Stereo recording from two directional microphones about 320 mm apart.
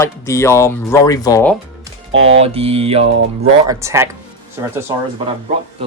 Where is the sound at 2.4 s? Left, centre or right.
Centre.